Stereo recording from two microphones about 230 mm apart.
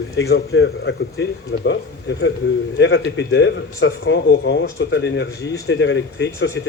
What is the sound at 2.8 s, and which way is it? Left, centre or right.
Speech, left.